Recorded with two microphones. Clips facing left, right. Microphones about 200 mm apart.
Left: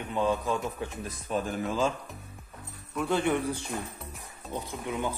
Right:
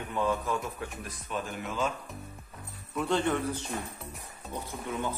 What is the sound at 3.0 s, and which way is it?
Speech, 10° left (ahead or behind).